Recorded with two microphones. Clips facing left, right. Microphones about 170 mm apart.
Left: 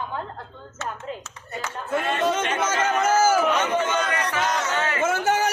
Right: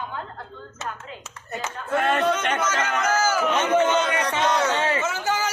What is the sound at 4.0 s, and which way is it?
Battle cry, 25° right (ahead or behind).